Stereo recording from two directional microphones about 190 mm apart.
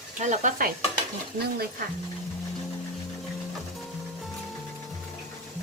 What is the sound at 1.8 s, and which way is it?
Speech, 50° right (ahead or behind).